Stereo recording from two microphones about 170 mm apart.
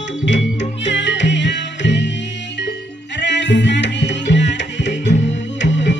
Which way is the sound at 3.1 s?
90° left.